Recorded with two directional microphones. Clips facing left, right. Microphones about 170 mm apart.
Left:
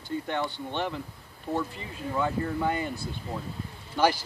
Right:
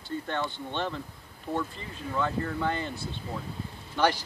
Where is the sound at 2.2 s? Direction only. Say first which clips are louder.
Left 1 dB; 15° left (ahead or behind).